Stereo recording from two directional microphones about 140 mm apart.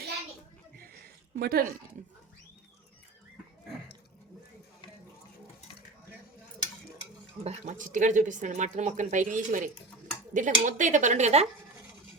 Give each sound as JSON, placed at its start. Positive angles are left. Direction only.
{"t": 0.8, "sound": "a sound", "side_deg": -90}
{"t": 7.4, "sound": "speech", "side_deg": -45}
{"t": 7.8, "sound": "speech", "side_deg": -65}